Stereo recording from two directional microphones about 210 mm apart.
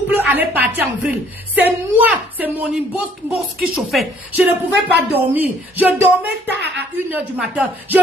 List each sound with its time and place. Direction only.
0.1 s a woman's voice: 10° right (ahead or behind)